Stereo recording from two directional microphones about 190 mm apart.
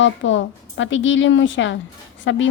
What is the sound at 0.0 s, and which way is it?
A woman's voice, 80° left.